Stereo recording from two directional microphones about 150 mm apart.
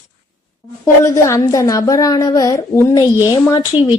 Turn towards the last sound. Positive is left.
turn(degrees=30)  # may be behind; listen again after turning